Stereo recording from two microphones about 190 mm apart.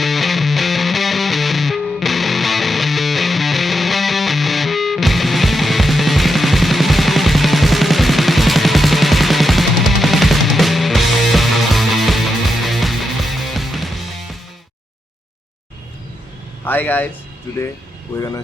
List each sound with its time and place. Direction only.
0.0 s music: centre (ahead or behind)
16.6 s speech: 10° left (ahead or behind)